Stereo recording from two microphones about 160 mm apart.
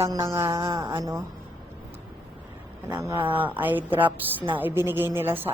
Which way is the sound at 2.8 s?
15° right (ahead or behind).